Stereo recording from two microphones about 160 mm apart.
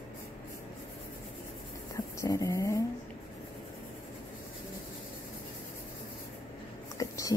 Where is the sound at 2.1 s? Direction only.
20° left (ahead or behind).